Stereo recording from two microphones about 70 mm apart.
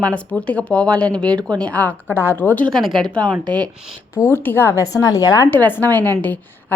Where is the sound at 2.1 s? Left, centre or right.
Left.